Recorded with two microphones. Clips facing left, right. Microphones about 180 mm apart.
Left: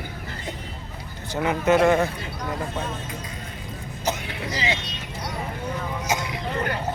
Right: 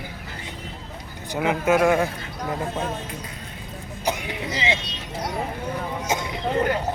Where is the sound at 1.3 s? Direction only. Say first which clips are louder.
Even; 10° right (ahead or behind).